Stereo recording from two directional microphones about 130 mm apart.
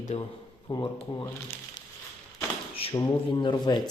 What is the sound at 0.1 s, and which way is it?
Speech, 60° left (ahead or behind).